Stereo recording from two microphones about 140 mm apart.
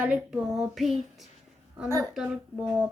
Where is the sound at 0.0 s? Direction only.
10° right (ahead or behind).